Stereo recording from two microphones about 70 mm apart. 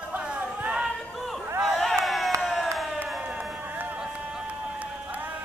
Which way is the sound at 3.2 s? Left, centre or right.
Centre.